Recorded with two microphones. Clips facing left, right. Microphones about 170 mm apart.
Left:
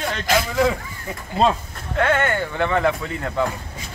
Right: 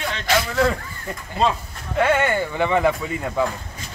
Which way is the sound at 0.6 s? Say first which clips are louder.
Left 1 dB; centre (ahead or behind).